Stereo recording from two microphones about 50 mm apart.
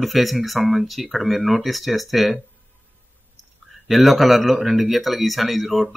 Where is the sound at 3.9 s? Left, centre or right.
Centre.